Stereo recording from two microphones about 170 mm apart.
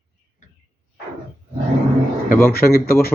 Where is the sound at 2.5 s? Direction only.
60° left (ahead or behind).